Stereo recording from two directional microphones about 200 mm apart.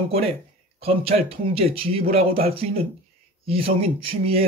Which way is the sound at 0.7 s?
30° right (ahead or behind).